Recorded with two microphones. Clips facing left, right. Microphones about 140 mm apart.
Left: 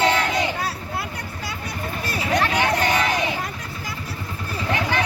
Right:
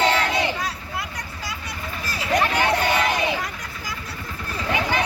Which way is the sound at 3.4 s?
30° left (ahead or behind).